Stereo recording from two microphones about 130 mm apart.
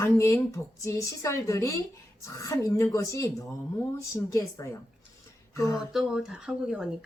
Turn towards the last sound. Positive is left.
turn(degrees=-5)  # may be behind; listen again after turning